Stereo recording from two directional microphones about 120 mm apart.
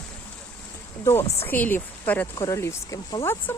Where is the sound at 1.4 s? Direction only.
15° left (ahead or behind).